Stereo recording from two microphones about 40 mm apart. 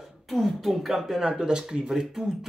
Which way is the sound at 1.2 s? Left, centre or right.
Centre.